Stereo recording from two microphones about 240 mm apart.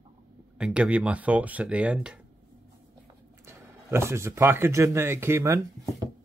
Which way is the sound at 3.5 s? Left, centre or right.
Centre.